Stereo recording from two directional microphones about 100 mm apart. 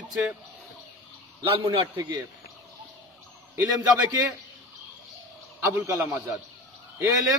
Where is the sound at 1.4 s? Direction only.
60° right (ahead or behind).